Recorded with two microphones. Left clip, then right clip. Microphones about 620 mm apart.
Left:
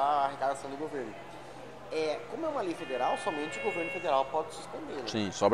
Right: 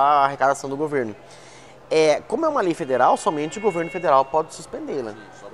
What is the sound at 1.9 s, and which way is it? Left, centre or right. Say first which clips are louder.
Speech: right 15 dB; right.